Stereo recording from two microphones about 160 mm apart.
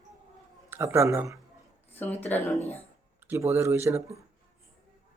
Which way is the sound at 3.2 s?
15° right (ahead or behind).